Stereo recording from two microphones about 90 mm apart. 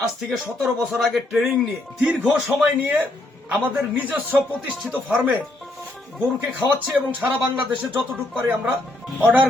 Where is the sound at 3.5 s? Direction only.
15° right (ahead or behind).